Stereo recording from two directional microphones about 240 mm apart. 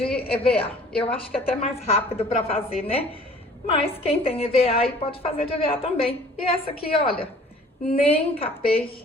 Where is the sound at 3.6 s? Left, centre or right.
Left.